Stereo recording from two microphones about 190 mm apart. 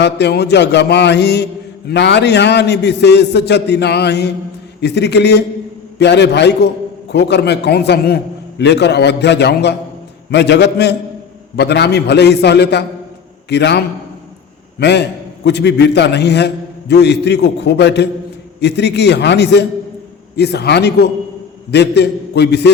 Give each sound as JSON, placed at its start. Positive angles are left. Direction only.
{"t": 0.0, "sound": "a man's voice", "side_deg": 60}